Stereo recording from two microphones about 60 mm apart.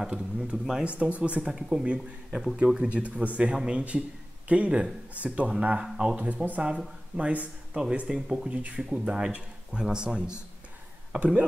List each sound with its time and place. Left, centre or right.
0.0 s speech: centre
0.8 s speech: centre
1.4 s speech: centre
8.1 s speech: centre
8.5 s speech: centre